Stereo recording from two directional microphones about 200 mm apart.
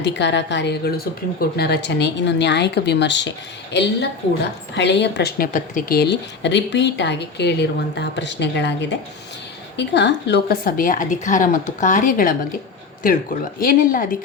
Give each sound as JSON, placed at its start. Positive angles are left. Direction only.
{"t": 0.0, "sound": "a woman's voice", "side_deg": 60}